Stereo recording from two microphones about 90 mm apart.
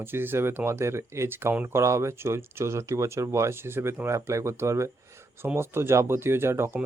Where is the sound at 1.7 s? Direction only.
35° right (ahead or behind).